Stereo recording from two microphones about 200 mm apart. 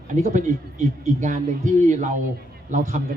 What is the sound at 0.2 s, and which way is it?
Speech, 40° right (ahead or behind).